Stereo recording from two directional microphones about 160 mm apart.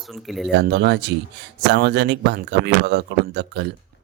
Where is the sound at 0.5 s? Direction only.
90° right.